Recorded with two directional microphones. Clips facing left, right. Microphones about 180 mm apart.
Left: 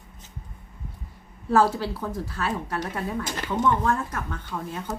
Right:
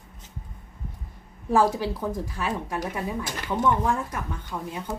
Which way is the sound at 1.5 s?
15° right (ahead or behind).